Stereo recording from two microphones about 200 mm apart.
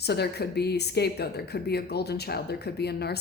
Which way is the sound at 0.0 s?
55° left (ahead or behind).